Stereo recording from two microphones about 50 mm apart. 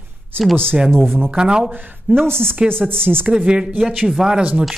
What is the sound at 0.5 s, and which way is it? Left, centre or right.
Speech, right.